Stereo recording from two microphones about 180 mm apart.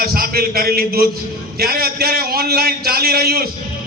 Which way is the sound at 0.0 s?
55° right (ahead or behind).